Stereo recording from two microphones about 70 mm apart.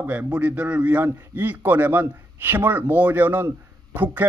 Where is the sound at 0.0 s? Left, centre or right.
Right.